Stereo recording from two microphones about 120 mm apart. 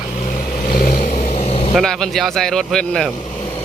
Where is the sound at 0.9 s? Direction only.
70° left (ahead or behind).